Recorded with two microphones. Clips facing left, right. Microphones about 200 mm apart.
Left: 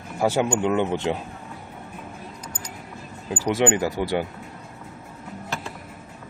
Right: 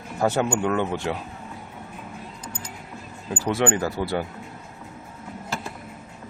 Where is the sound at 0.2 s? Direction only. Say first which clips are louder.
Left 1 dB; 10° left (ahead or behind).